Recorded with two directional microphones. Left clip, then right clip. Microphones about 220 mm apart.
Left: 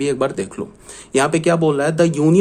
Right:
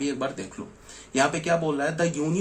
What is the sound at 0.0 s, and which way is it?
Speech, 50° left (ahead or behind).